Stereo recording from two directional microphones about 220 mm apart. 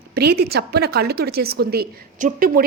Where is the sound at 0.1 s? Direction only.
45° right (ahead or behind).